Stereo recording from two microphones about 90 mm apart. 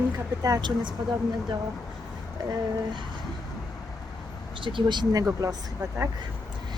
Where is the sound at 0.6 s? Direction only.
60° right (ahead or behind).